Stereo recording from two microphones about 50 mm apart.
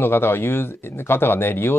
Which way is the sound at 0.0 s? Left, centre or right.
Left.